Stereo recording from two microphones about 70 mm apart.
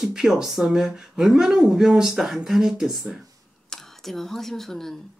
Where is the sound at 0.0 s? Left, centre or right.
Centre.